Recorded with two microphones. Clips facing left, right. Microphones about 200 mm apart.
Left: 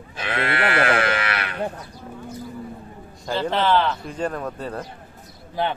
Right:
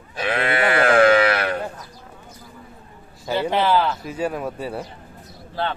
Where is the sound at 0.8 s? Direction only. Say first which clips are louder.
Right 8 dB; 45° right (ahead or behind).